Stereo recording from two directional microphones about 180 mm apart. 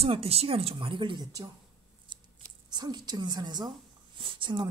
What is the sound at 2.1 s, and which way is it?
Scissors, 25° right (ahead or behind).